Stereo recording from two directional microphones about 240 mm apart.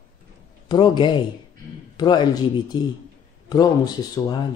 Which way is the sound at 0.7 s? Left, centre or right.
Centre.